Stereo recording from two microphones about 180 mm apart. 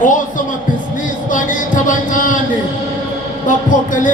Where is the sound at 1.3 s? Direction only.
45° left (ahead or behind).